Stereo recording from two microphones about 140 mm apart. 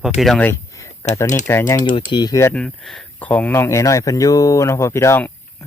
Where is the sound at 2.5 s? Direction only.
5° left (ahead or behind).